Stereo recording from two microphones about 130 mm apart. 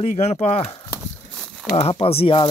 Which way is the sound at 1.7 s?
50° left (ahead or behind).